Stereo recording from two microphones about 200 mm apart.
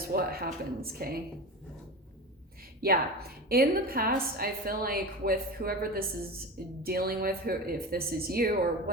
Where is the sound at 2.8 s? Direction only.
50° right (ahead or behind).